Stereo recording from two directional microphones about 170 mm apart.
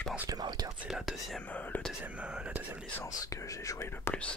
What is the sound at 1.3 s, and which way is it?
Speech, 10° left (ahead or behind).